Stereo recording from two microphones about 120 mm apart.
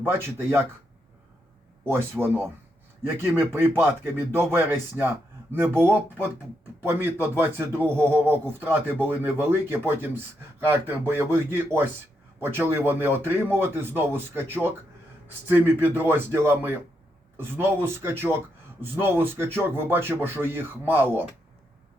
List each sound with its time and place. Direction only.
0.0 s a man's voice: 20° right (ahead or behind)
1.9 s a man's voice: 20° right (ahead or behind)